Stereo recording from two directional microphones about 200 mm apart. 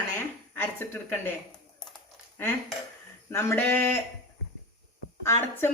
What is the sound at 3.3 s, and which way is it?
Speech, 10° left (ahead or behind).